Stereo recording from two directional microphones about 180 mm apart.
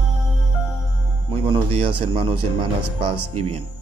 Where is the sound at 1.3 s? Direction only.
30° right (ahead or behind).